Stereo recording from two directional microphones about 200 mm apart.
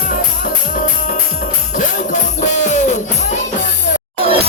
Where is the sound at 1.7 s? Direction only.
40° left (ahead or behind).